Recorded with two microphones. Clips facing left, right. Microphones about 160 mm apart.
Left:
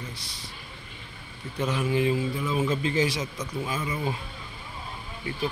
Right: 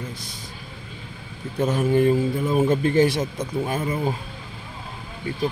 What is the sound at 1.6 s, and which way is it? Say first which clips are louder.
A man's voice: right 6 dB; 45° right (ahead or behind).